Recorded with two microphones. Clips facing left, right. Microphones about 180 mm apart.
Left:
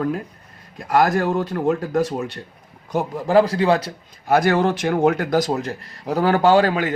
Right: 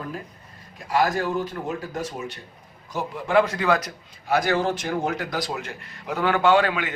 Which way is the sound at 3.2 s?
35° left (ahead or behind).